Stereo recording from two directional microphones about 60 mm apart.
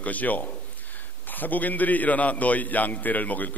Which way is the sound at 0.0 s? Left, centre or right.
Left.